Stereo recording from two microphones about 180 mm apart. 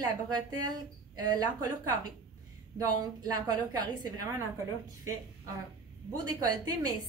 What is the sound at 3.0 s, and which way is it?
Speech, 20° right (ahead or behind).